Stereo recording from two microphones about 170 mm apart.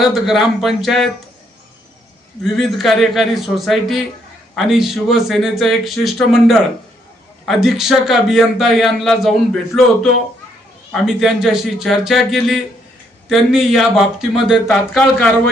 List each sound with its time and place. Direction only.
0.0 s a man's voice: centre (ahead or behind)
2.4 s a man's voice: centre (ahead or behind)